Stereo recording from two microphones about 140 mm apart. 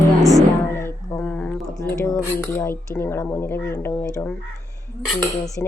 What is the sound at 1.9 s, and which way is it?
Cutlery, 20° left (ahead or behind).